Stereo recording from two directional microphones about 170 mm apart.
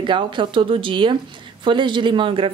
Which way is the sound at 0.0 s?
30° right (ahead or behind).